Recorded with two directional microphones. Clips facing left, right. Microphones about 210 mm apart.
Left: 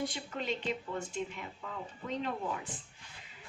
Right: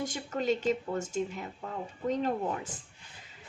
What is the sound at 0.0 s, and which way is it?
Speech, 45° right (ahead or behind).